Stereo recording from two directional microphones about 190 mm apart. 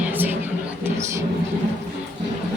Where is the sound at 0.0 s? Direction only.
10° right (ahead or behind).